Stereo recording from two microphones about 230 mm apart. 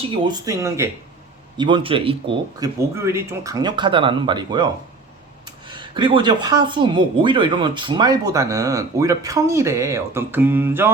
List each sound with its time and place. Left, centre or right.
0.3 s a man's voice: centre
2.6 s speech: centre